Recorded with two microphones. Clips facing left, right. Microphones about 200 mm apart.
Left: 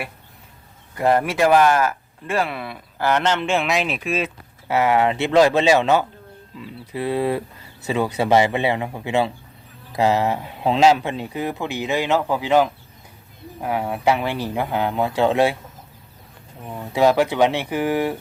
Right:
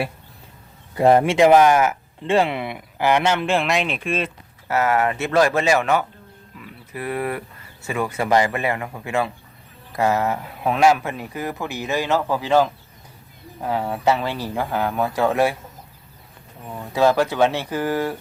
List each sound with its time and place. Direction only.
0.9 s speech: 20° right (ahead or behind); by 4.3 s 5° left (ahead or behind)
4.7 s speech: 20° left (ahead or behind)
16.6 s speech: 5° left (ahead or behind)
16.9 s speech: 20° left (ahead or behind)